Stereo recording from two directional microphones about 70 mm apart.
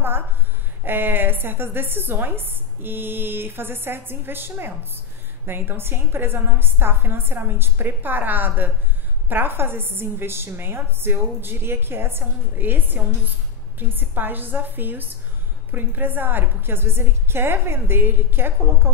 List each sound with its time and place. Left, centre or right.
0.8 s a woman's voice: right